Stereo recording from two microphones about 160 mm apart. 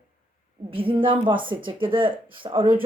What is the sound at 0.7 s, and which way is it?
A woman's voice, 35° right (ahead or behind).